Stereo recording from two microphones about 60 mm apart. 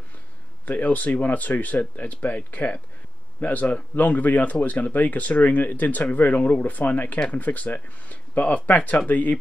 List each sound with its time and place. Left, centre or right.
0.7 s speech: left